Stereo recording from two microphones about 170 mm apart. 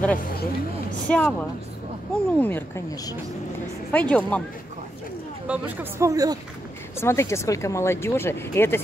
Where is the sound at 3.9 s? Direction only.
10° left (ahead or behind).